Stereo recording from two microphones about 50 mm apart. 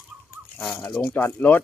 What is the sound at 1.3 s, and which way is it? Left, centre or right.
Speech, left.